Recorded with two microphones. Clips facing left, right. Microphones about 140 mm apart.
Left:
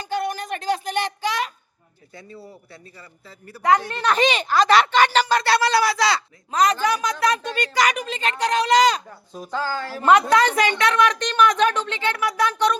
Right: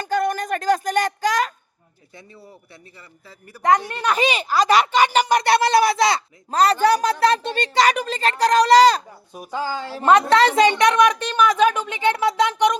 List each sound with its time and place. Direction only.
0.0 s a sound: 45° right (ahead or behind)
2.6 s speech: 20° right (ahead or behind)
6.5 s speech: 35° right (ahead or behind)
9.3 s a woman's voice: 15° right (ahead or behind)